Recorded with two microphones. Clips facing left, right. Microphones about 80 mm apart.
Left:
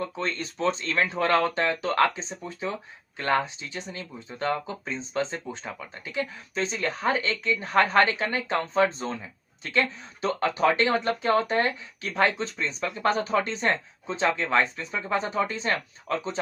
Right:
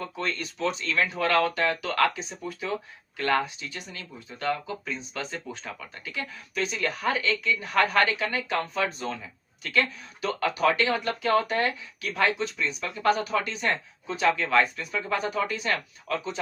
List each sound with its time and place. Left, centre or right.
0.0 s speech: left